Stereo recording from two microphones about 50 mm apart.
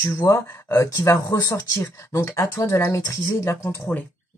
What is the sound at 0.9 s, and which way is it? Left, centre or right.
Speech, left.